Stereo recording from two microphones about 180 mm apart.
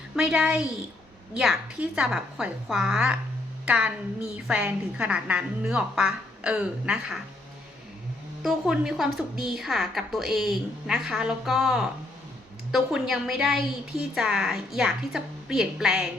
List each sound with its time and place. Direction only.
0.2 s a woman's voice: 5° right (ahead or behind)
8.4 s a woman's voice: centre (ahead or behind)